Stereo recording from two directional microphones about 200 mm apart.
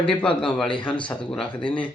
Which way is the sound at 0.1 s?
5° left (ahead or behind).